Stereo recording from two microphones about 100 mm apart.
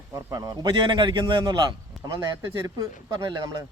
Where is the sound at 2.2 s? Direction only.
30° right (ahead or behind).